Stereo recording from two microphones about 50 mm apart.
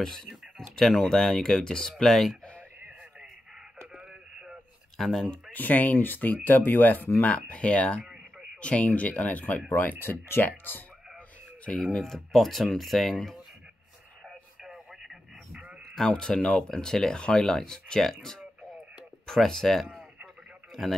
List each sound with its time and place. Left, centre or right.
0.0 s speech: centre
3.9 s radio: centre
4.9 s speech: centre
5.5 s speech: left
7.3 s speech: left
9.7 s speech: left
11.7 s speech: centre
14.6 s radio: centre
16.1 s speech: centre